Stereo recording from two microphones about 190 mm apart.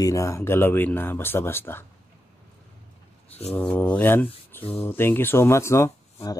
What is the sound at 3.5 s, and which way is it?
Speech, 10° left (ahead or behind).